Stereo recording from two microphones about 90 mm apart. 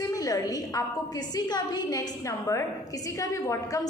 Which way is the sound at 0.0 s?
40° left (ahead or behind).